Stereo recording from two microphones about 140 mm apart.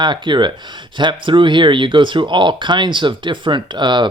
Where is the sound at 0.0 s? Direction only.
35° right (ahead or behind).